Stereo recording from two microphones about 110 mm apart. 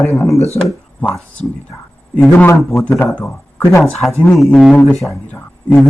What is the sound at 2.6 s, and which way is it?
Speech, centre (ahead or behind).